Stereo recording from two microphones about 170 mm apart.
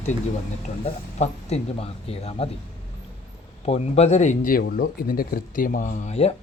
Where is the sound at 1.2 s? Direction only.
40° left (ahead or behind).